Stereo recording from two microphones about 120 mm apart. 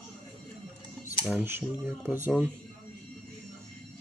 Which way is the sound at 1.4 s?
20° right (ahead or behind).